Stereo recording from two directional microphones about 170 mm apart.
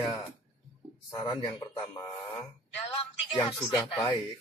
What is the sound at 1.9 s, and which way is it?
Speech, 15° left (ahead or behind).